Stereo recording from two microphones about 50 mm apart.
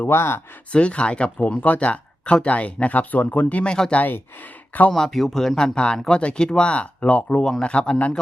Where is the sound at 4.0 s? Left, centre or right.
Left.